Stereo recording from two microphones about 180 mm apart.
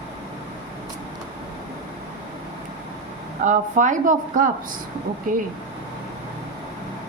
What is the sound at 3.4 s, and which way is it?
A woman's voice, 45° right (ahead or behind).